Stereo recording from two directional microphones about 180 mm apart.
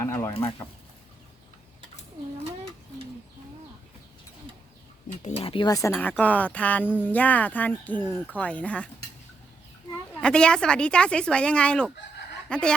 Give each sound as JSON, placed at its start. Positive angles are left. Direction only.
{"t": 0.0, "sound": "a sound", "side_deg": 15}
{"t": 5.2, "sound": "speech", "side_deg": 30}
{"t": 5.9, "sound": "speech", "side_deg": 10}
{"t": 10.2, "sound": "speech", "side_deg": 5}